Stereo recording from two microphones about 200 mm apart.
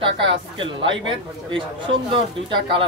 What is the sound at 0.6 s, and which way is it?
Speech, 70° right (ahead or behind).